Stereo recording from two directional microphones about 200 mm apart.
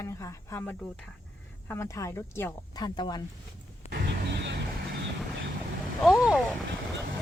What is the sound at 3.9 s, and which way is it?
Vehicle, 55° right (ahead or behind).